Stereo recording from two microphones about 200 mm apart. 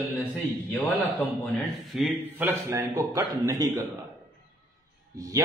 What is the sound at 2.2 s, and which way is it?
Speech, 10° right (ahead or behind).